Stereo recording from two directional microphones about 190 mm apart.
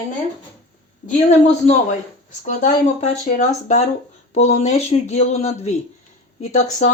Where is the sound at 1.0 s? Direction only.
40° left (ahead or behind).